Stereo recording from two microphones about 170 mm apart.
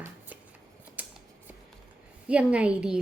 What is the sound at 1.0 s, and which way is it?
Scissors, 10° right (ahead or behind).